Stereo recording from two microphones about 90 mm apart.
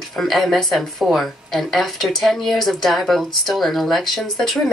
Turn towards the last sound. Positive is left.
turn(degrees=0)  # may be behind; listen again after turning